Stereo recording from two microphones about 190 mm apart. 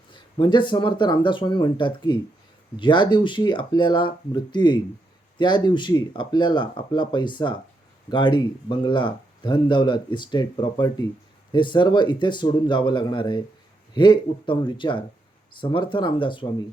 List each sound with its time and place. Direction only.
0.1 s speech: 25° left (ahead or behind)